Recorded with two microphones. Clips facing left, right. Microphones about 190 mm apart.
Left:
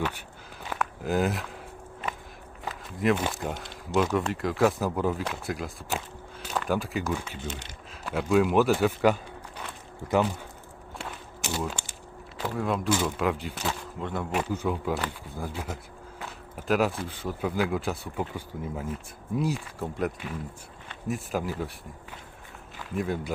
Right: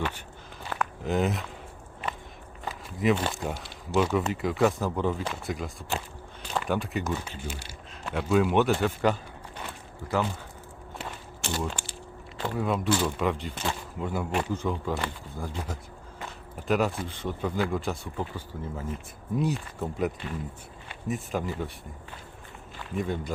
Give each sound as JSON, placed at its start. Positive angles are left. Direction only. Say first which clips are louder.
{"t": 0.7, "sound": "a sound", "louder": "left 1 dB", "side_deg": 5}
{"t": 2.6, "sound": "speech", "louder": "even", "side_deg": 0}
{"t": 3.5, "sound": "speech", "louder": "even", "side_deg": -5}
{"t": 7.3, "sound": "speech", "louder": "left 1 dB", "side_deg": -10}
{"t": 10.0, "sound": "speech", "louder": "left 4 dB", "side_deg": 20}
{"t": 11.4, "sound": "speech", "louder": "even", "side_deg": 5}
{"t": 14.3, "sound": "speech", "louder": "left 3 dB", "side_deg": 10}
{"t": 19.4, "sound": "speech", "louder": "even", "side_deg": 0}
{"t": 22.8, "sound": "a man's voice", "louder": "left 1 dB", "side_deg": 5}